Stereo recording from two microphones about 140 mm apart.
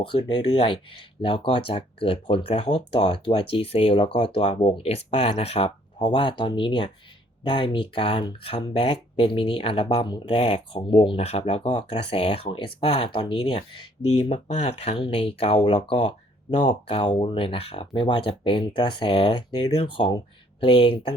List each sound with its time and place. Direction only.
0.0 s speech: 35° left (ahead or behind)
14.3 s speech: 50° left (ahead or behind)